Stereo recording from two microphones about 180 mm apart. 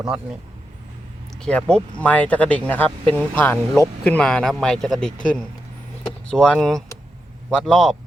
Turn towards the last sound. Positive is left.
turn(degrees=0)  # may be behind; listen again after turning